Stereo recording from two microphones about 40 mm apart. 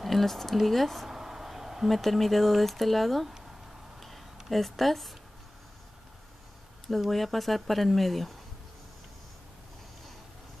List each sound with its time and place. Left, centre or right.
0.0 s a sound: centre
1.9 s speech: centre
4.5 s speech: centre
6.9 s speech: centre